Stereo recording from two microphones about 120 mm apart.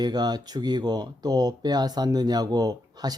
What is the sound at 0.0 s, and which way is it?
Speech, 35° right (ahead or behind).